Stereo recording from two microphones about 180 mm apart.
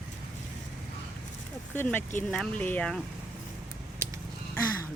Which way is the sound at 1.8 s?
10° left (ahead or behind).